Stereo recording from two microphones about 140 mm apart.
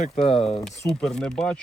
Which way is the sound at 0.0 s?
45° left (ahead or behind).